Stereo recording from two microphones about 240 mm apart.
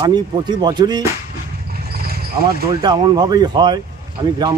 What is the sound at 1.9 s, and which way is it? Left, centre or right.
Basketball bounce, right.